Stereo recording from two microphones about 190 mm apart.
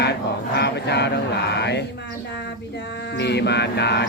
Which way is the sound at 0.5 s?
60° left (ahead or behind).